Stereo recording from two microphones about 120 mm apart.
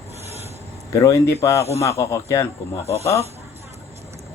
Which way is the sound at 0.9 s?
25° left (ahead or behind).